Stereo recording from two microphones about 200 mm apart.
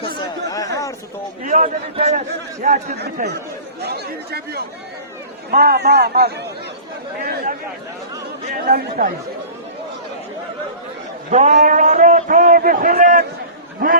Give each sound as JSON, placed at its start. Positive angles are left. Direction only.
{"t": 0.0, "sound": "chatter", "side_deg": 25}
{"t": 1.5, "sound": "a man's voice", "side_deg": -40}
{"t": 2.9, "sound": "a man's voice", "side_deg": -55}
{"t": 8.6, "sound": "a man's voice", "side_deg": -50}
{"t": 11.3, "sound": "a man's voice", "side_deg": -35}